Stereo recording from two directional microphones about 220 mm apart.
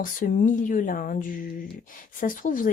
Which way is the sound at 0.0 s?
40° left (ahead or behind).